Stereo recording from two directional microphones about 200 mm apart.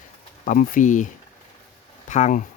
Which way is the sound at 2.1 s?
40° left (ahead or behind).